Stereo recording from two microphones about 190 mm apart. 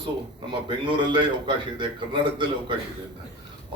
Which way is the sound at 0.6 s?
25° right (ahead or behind).